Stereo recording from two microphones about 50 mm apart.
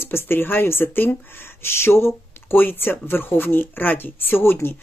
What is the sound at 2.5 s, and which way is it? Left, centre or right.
Speech, left.